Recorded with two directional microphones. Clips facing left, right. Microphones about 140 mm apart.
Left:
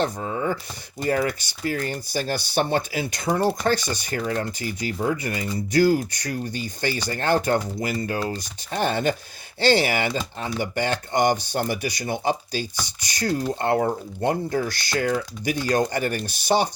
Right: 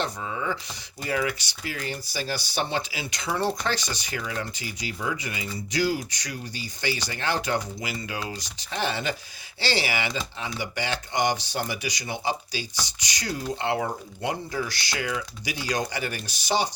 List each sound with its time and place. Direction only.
0.0 s speech: 40° left (ahead or behind)